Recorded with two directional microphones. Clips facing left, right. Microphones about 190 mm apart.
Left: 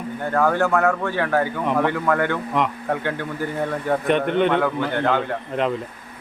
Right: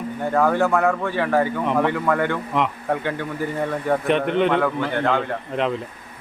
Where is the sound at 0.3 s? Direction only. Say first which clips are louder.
Even; centre (ahead or behind).